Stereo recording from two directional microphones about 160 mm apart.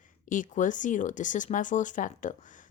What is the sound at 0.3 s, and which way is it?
Speech, 55° left (ahead or behind).